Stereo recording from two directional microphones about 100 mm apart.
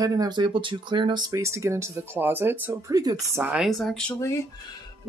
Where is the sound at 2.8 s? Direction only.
40° right (ahead or behind).